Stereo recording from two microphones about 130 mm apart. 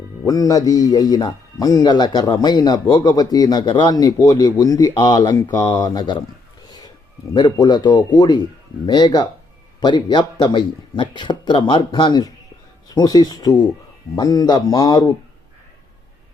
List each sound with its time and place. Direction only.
0.3 s a man's voice: 25° left (ahead or behind)
6.7 s a sound: 30° left (ahead or behind)
7.3 s a man's voice: 35° left (ahead or behind)